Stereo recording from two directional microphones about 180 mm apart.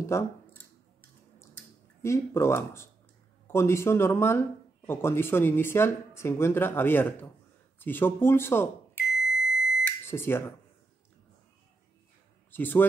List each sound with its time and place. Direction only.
0.0 s speech: 15° left (ahead or behind)
2.0 s speech: 15° left (ahead or behind)
9.2 s smoke detector: 5° right (ahead or behind)
9.8 s smoke detector: 10° left (ahead or behind)
12.4 s a man's voice: 10° left (ahead or behind)